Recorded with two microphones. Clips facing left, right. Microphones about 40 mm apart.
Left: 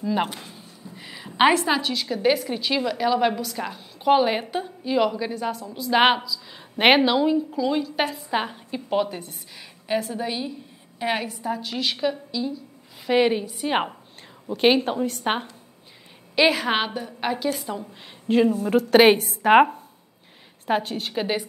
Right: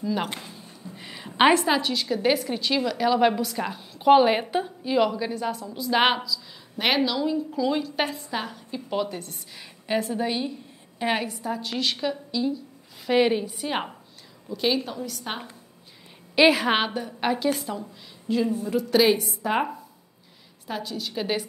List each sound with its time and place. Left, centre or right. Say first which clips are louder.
0.0 s a woman's voice: left 3 dB; centre
0.9 s a woman's voice: even; centre
6.8 s a woman's voice: left 6 dB; left
7.3 s a woman's voice: left 2 dB; centre
8.3 s a woman's voice: left 5 dB; left
9.8 s a woman's voice: even; centre
13.7 s a woman's voice: left 6 dB; centre
14.5 s a woman's voice: left 6 dB; left
16.3 s a woman's voice: right 1 dB; centre
18.5 s a woman's voice: left 5 dB; left